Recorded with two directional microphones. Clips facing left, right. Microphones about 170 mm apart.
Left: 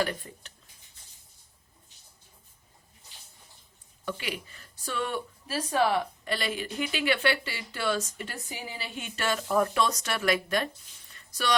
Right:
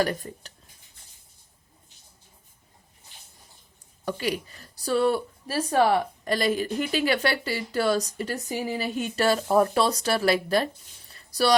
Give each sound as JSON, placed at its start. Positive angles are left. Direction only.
{"t": 0.0, "sound": "speech", "side_deg": -40}
{"t": 4.0, "sound": "a woman's voice", "side_deg": -40}
{"t": 11.1, "sound": "a sound", "side_deg": -35}